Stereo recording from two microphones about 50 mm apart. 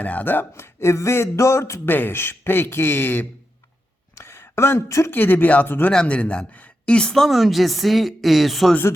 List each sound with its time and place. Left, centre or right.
0.0 s speech: left
0.5 s speech: left
1.9 s a man's voice: left
4.2 s a sound: left
5.1 s a man's voice: left
5.9 s a woman's voice: centre
7.1 s speech: centre